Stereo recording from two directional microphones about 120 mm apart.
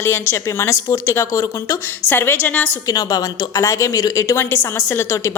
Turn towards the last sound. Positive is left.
turn(degrees=20)  # may be behind; listen again after turning